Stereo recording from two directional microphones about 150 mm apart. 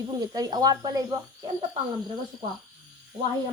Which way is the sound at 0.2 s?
25° right (ahead or behind).